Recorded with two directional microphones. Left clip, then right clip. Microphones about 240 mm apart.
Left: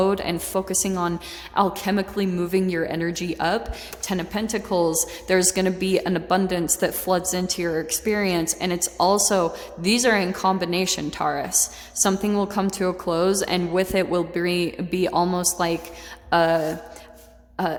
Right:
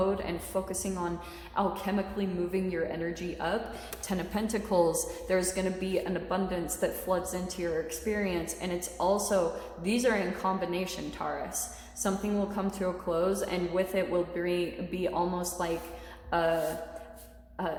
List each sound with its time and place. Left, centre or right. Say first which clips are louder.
0.0 s a woman's voice: left 8 dB; left
4.0 s a woman's voice: left 7 dB; left
5.3 s a woman's voice: left 9 dB; left